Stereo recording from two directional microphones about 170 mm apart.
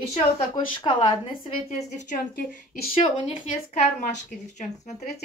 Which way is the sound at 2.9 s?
30° left (ahead or behind).